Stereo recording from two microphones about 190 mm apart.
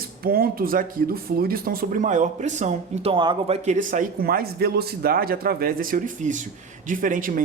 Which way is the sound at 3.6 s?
40° right (ahead or behind).